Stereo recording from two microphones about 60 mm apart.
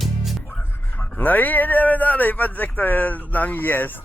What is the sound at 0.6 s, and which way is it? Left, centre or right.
Speech, left.